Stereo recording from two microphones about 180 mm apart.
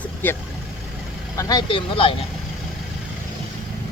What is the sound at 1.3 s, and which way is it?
Speech, 20° left (ahead or behind).